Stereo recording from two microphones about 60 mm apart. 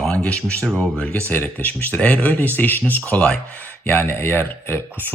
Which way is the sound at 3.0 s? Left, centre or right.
Left.